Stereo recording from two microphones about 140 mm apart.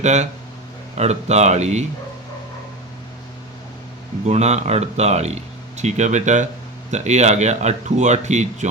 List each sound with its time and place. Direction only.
0.0 s speech: 55° right (ahead or behind)
4.3 s speech: 50° right (ahead or behind)